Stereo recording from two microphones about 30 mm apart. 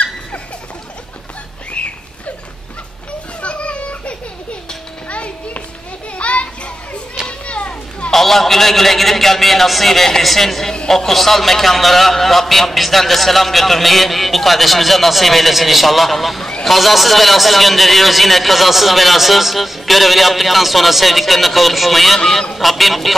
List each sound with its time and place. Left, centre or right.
1.8 s a sound: left
3.4 s children playing: left
5.1 s children playing: left
8.1 s a man's voice: centre